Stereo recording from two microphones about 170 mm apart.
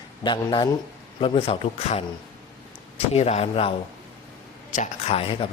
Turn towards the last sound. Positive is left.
turn(degrees=30)  # may be behind; listen again after turning